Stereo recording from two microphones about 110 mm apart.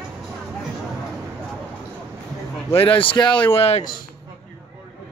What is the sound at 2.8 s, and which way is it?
Speech, 55° left (ahead or behind).